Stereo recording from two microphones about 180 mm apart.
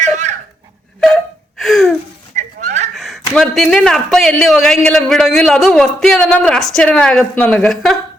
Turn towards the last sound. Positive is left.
turn(degrees=0)  # may be behind; listen again after turning